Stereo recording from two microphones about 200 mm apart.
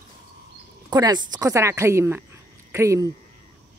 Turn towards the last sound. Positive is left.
turn(degrees=-15)  # may be behind; listen again after turning